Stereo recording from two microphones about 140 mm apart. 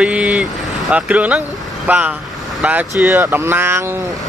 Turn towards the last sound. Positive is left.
turn(degrees=-15)  # may be behind; listen again after turning